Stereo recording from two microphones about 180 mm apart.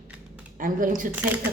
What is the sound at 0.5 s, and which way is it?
Speech, 50° right (ahead or behind).